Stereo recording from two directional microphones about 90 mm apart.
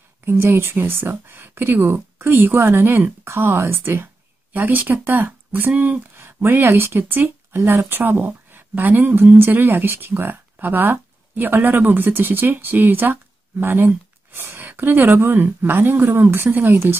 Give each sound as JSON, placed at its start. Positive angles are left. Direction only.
{"t": 0.2, "sound": "speech", "side_deg": -25}